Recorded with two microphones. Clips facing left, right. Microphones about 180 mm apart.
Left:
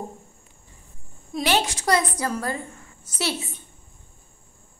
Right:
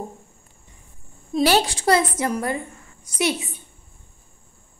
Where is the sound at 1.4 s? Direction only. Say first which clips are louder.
Right 4 dB; 35° right (ahead or behind); by 3.6 s 15° right (ahead or behind).